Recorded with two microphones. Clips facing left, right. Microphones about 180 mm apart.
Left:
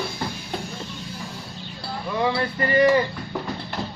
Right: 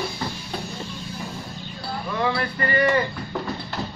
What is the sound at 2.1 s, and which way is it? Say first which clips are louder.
Male singing: left 2 dB; 15° left (ahead or behind).